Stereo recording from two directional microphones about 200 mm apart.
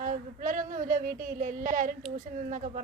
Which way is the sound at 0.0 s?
40° right (ahead or behind).